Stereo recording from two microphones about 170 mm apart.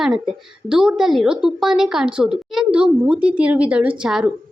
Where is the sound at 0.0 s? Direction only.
5° right (ahead or behind).